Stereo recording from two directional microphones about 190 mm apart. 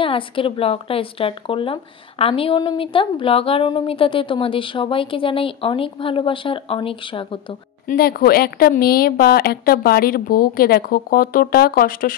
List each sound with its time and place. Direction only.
0.0 s speech: 30° left (ahead or behind)
7.9 s a woman's voice: 55° left (ahead or behind)